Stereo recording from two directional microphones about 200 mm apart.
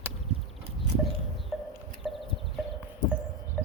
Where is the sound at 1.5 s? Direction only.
Centre (ahead or behind).